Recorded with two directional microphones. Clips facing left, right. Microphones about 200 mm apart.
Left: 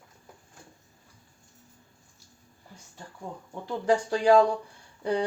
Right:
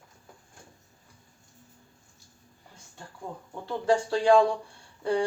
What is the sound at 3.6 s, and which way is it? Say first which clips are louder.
Speech: even; 15° left (ahead or behind).